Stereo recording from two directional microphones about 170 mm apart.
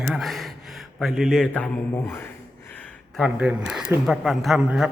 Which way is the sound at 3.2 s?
5° right (ahead or behind).